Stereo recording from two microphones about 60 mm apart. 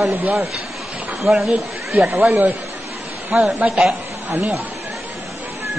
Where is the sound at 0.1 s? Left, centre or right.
Right.